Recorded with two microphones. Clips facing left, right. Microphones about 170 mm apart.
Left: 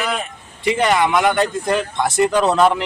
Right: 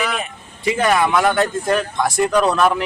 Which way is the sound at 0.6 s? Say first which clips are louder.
Even; 20° left (ahead or behind).